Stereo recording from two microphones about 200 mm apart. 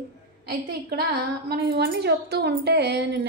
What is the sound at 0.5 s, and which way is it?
A woman's voice, 50° right (ahead or behind).